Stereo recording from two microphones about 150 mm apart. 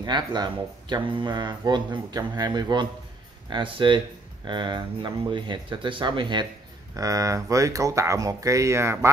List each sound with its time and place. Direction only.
0.0 s speech: 30° right (ahead or behind)